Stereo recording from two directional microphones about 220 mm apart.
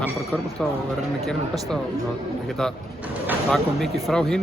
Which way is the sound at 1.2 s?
5° left (ahead or behind).